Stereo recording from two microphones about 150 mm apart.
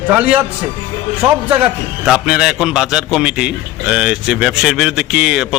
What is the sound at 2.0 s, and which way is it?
A man's voice, 5° right (ahead or behind).